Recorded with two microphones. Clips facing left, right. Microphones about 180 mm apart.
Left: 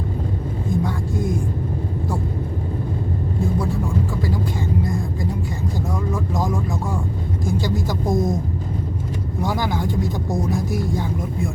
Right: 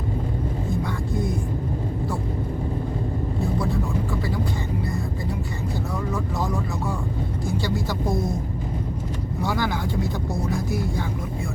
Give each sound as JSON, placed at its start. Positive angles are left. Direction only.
{"t": 7.6, "sound": "speech", "side_deg": 15}
{"t": 9.4, "sound": "speech", "side_deg": 15}